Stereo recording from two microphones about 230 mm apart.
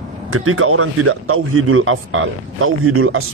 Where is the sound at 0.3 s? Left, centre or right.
Right.